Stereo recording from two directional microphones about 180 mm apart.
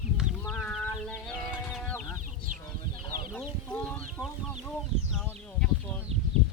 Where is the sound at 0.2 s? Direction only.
Centre (ahead or behind).